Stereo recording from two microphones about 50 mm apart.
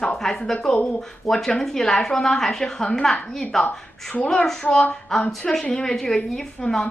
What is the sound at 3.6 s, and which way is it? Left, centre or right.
Speech, left.